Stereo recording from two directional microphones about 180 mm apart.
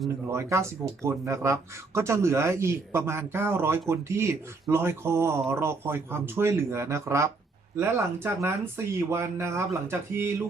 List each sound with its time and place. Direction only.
0.3 s speech: 15° right (ahead or behind)